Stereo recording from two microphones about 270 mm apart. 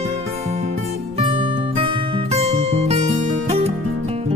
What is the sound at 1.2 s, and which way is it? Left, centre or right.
Music, centre.